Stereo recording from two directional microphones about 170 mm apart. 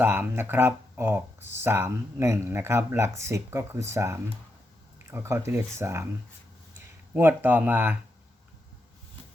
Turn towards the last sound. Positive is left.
turn(degrees=-10)  # may be behind; listen again after turning